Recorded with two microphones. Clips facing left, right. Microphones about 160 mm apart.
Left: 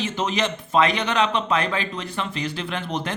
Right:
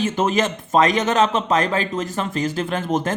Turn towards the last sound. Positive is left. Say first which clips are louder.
# right 6 dB
turn(degrees=-45)  # may be behind; listen again after turning